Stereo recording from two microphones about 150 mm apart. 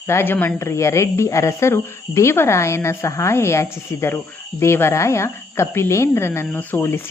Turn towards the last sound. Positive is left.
turn(degrees=15)  # may be behind; listen again after turning